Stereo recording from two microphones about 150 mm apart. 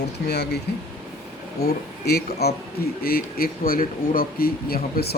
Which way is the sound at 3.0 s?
80° left.